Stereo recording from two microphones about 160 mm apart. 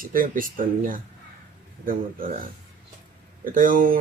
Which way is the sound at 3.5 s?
55° right (ahead or behind).